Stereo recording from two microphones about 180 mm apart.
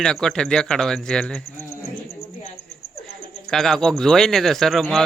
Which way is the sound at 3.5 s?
Centre (ahead or behind).